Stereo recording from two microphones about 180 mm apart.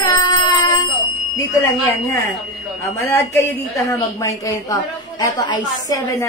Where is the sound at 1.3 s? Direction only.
15° left (ahead or behind).